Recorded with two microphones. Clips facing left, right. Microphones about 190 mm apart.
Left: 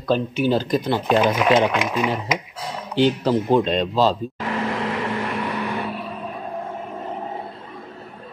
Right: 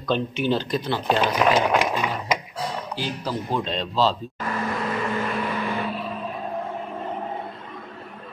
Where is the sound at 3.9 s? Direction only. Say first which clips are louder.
Left 1 dB; 45° left (ahead or behind).